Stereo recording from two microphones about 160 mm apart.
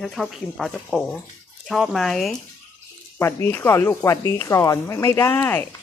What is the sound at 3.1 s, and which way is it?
Speech, 15° left (ahead or behind).